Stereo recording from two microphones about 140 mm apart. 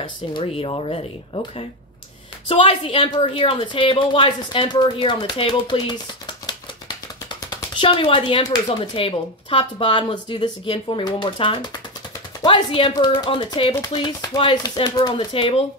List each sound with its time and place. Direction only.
0.0 s speech: 40° left (ahead or behind)
2.5 s a woman's voice: 40° left (ahead or behind)